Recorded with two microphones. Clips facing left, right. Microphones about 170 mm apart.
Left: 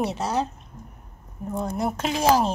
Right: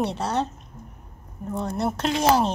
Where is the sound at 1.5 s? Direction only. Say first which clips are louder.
Even; 10° left (ahead or behind).